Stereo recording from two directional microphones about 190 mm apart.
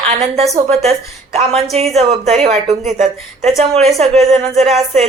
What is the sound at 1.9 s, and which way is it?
Speech, 35° right (ahead or behind).